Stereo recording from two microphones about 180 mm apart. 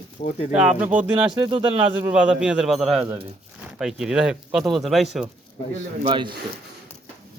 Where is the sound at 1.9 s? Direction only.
10° right (ahead or behind).